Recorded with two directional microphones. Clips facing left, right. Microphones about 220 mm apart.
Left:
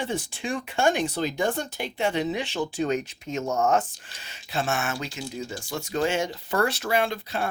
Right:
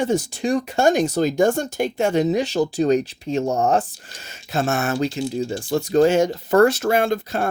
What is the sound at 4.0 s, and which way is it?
Speech, 45° right (ahead or behind).